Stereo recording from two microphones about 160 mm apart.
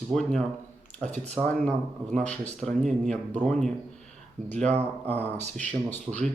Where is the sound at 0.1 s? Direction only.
Centre (ahead or behind).